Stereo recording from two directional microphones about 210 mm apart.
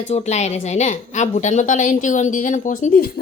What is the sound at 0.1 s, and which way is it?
A woman's voice, 30° left (ahead or behind).